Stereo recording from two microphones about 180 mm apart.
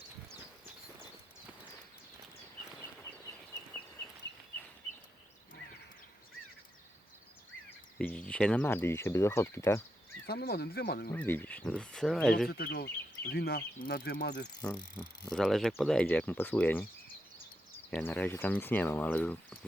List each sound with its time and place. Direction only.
0.3 s horse: 15° right (ahead or behind)
7.9 s speech: 5° left (ahead or behind)
10.2 s speech: 65° left (ahead or behind)
11.1 s speech: 10° left (ahead or behind)
12.5 s speech: 60° left (ahead or behind)
14.6 s speech: 5° left (ahead or behind)